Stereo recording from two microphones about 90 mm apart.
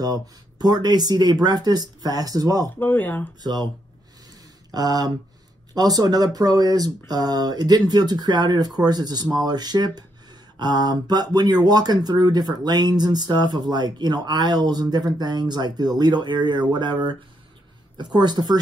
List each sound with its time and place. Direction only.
0.0 s speech: 45° right (ahead or behind)
2.8 s speech: 20° left (ahead or behind)
4.6 s speech: 45° right (ahead or behind)